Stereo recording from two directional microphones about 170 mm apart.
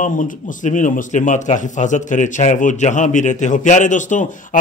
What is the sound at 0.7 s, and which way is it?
A man's voice, 50° left (ahead or behind).